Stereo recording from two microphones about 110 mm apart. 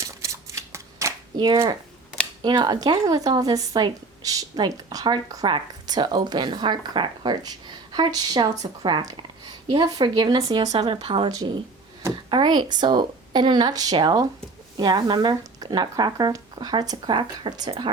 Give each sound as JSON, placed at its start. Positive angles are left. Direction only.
{"t": 0.0, "sound": "shuffling cards", "side_deg": -25}
{"t": 1.4, "sound": "a woman's voice", "side_deg": -45}
{"t": 10.8, "sound": "speech", "side_deg": -55}
{"t": 12.3, "sound": "a woman's voice", "side_deg": -45}
{"t": 17.1, "sound": "speech", "side_deg": -50}